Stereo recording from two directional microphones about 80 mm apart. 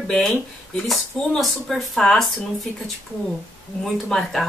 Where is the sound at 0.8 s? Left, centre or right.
Centre.